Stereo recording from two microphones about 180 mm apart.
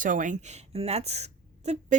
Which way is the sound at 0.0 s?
45° right (ahead or behind).